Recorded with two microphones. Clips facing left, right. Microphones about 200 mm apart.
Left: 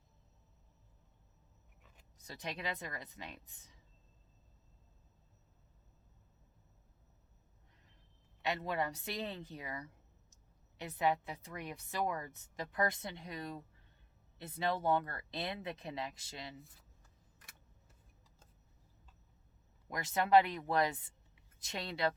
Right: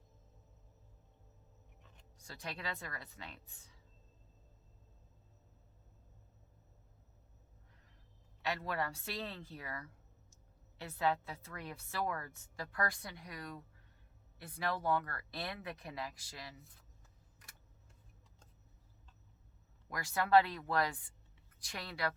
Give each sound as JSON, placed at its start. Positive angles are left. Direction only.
{"t": 2.2, "sound": "a woman's voice", "side_deg": 20}
{"t": 8.4, "sound": "a woman's voice", "side_deg": 20}
{"t": 19.9, "sound": "a woman's voice", "side_deg": 20}